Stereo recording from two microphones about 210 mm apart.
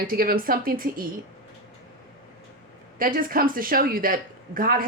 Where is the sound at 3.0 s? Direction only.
40° right (ahead or behind).